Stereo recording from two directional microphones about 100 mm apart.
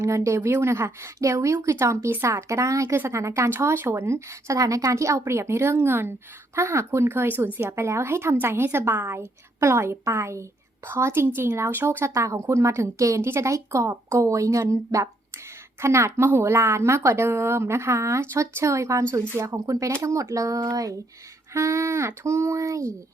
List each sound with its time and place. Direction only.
0.0 s speech: 30° right (ahead or behind)